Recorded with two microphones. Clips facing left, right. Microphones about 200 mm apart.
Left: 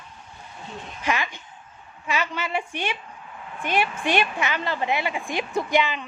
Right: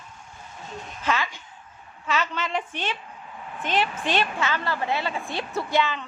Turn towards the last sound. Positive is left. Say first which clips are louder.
# left 2 dB
turn(degrees=15)  # may be behind; listen again after turning